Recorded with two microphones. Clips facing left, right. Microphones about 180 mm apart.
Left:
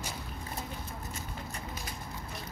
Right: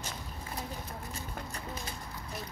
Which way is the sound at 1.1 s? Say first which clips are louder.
Even; 35° right (ahead or behind).